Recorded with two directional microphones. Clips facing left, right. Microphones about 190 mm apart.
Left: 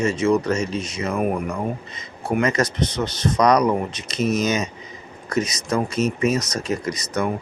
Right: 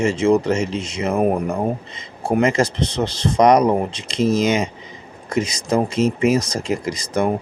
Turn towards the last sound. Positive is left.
turn(degrees=-25)  # may be behind; listen again after turning